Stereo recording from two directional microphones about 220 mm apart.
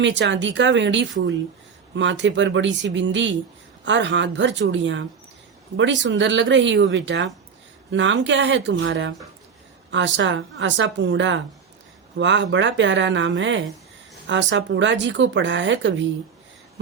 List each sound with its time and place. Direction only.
0.0 s speech: 55° right (ahead or behind)